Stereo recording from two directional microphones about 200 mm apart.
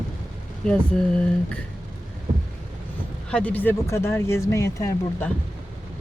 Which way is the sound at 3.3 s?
5° left (ahead or behind).